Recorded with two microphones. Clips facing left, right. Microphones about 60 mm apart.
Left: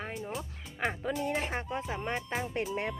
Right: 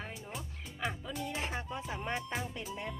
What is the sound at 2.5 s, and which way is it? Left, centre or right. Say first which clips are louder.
Speech: left 8 dB; left.